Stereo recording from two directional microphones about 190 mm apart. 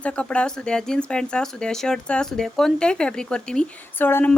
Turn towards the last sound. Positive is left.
turn(degrees=10)  # may be behind; listen again after turning